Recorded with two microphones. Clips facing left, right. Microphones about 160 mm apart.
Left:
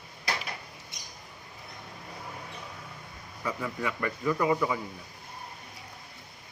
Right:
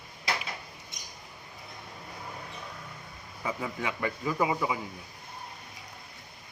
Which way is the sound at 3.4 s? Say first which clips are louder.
Left 1 dB; 20° right (ahead or behind).